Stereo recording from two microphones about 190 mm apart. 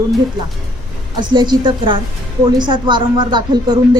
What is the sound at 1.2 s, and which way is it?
A woman's voice, 20° right (ahead or behind).